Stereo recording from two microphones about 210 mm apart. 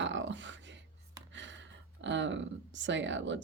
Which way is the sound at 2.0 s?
60° right (ahead or behind).